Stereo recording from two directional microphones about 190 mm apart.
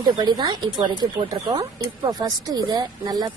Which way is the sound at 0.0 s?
25° right (ahead or behind).